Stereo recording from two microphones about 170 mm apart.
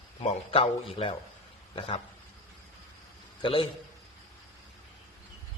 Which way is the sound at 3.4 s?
35° left (ahead or behind).